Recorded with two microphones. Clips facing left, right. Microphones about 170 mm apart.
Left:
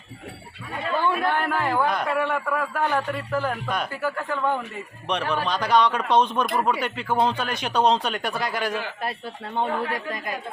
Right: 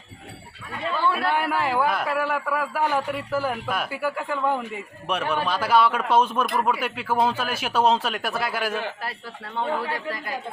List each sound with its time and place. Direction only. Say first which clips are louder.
0.9 s chatter: left 1 dB; 15° left (ahead or behind)
1.3 s a man's voice: even; 10° right (ahead or behind)